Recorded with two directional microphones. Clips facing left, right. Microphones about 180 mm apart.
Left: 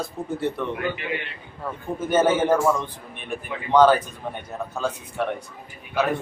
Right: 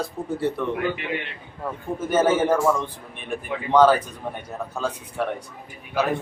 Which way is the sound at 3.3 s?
5° right (ahead or behind).